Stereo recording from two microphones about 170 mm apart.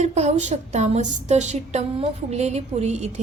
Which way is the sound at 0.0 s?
40° right (ahead or behind).